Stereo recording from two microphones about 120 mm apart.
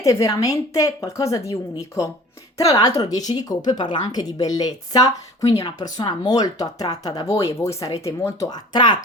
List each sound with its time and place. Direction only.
0.0 s a woman's voice: 25° left (ahead or behind)
2.6 s a woman's voice: 30° left (ahead or behind)